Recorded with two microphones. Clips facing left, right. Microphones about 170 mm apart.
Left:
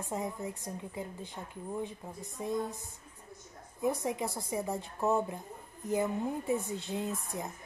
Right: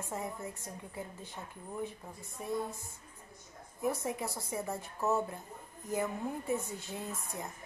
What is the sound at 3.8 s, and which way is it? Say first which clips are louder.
Speech: left 3 dB; 15° left (ahead or behind).